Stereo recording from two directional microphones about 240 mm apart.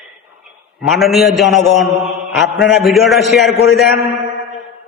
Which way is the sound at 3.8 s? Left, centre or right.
Left.